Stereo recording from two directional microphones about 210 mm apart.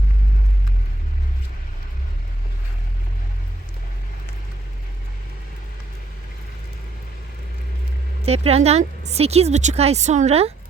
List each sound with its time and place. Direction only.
8.2 s speech: 30° right (ahead or behind)